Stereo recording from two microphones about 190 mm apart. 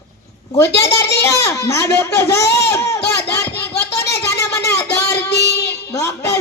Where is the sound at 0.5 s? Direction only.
15° left (ahead or behind).